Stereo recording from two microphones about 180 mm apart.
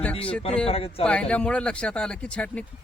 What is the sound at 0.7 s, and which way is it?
Speech, 35° left (ahead or behind).